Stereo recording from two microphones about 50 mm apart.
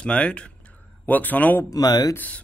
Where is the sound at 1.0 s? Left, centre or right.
Left.